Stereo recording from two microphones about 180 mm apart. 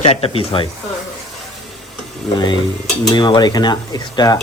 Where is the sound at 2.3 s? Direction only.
25° left (ahead or behind).